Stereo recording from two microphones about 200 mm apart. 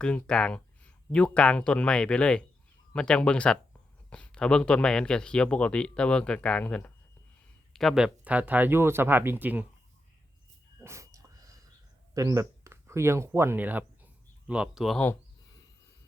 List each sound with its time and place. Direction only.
0.0 s speech: 5° left (ahead or behind)
10.8 s wheeze: 15° right (ahead or behind)
12.1 s speech: 15° right (ahead or behind); by 15.1 s centre (ahead or behind)